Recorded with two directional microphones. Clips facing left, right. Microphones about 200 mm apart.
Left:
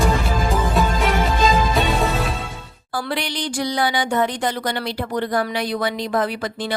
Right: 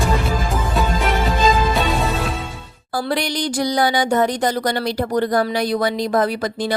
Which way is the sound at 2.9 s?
40° right (ahead or behind).